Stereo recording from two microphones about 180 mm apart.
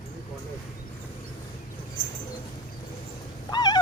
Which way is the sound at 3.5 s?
25° left (ahead or behind).